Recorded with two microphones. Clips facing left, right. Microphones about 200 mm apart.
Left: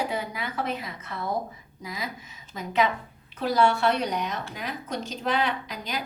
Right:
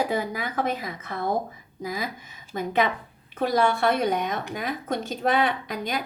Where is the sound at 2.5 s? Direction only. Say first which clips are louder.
Right 1 dB; 55° right (ahead or behind).